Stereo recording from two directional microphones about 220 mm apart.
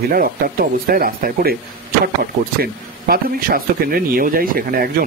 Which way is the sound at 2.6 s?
40° right (ahead or behind).